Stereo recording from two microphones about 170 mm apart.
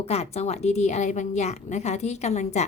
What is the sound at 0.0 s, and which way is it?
A woman's voice, 35° left (ahead or behind).